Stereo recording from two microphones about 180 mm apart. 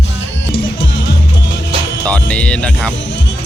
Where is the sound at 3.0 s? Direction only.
80° left.